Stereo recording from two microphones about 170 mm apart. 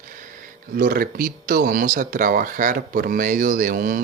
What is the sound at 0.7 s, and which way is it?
Speech, 60° right (ahead or behind).